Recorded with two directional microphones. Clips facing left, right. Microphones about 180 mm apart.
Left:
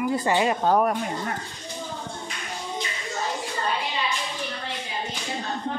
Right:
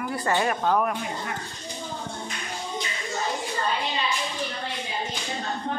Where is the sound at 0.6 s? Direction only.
40° left (ahead or behind).